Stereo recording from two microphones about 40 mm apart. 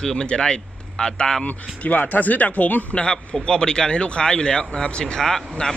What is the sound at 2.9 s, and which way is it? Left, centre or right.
Speech, left.